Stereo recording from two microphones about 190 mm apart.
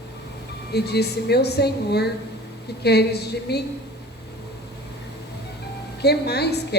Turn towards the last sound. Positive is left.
turn(degrees=60)  # may be behind; listen again after turning